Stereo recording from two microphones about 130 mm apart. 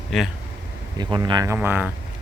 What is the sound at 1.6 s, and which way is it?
Speech, 15° right (ahead or behind).